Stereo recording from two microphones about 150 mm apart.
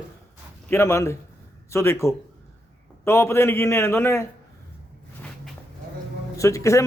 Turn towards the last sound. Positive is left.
turn(degrees=20)  # may be behind; listen again after turning